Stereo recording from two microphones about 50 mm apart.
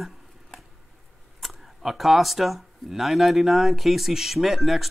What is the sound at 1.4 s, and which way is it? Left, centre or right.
Speech, centre.